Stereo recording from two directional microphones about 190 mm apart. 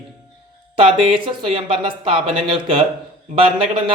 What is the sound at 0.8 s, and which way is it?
Speech, 25° right (ahead or behind).